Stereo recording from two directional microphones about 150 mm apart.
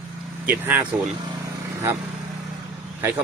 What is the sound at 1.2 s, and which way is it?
Vehicle, 25° right (ahead or behind).